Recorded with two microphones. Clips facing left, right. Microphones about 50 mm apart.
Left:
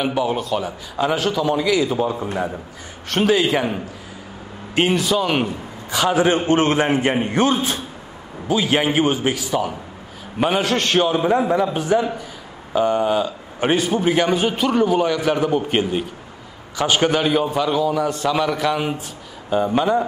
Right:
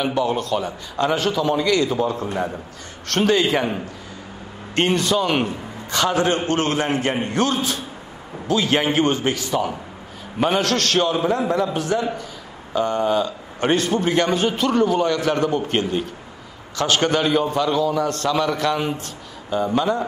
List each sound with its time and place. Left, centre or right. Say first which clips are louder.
0.0 s a man's voice: even; centre
8.5 s a man's voice: left 1 dB; centre
19.5 s a man's voice: left 2 dB; centre